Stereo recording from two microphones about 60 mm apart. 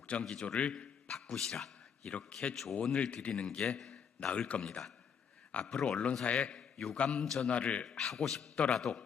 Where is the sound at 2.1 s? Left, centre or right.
Centre.